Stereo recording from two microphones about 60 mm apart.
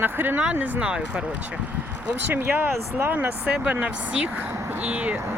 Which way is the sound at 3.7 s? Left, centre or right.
Centre.